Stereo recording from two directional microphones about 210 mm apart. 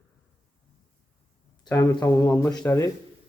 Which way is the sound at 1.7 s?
10° left (ahead or behind).